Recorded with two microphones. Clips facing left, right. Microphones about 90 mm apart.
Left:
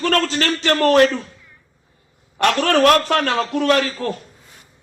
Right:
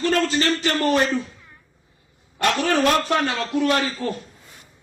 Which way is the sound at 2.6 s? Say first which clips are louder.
Left 6 dB; 80° left.